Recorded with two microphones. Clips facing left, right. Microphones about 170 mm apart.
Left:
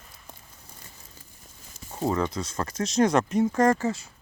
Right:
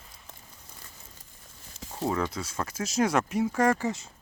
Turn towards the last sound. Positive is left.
turn(degrees=-20)  # may be behind; listen again after turning